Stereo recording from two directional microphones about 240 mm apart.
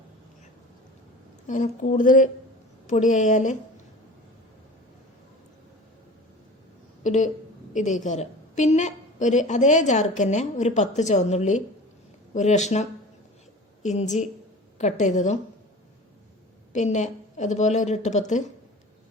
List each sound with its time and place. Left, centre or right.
1.5 s a woman's voice: left
7.0 s a woman's voice: left
16.7 s a woman's voice: left